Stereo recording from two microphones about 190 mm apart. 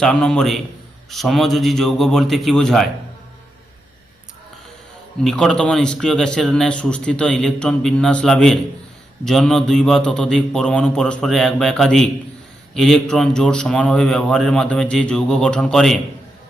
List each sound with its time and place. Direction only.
0.0 s speech: 5° left (ahead or behind)
5.2 s speech: centre (ahead or behind)